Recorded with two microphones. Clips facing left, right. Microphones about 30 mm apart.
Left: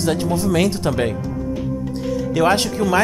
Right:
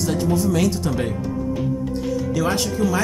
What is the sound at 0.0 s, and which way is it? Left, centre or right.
Speech, left.